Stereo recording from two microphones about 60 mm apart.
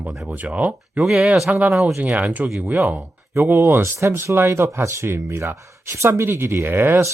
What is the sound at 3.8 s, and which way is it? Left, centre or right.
Speech, right.